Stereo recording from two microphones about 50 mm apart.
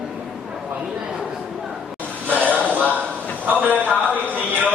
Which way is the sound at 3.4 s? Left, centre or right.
Right.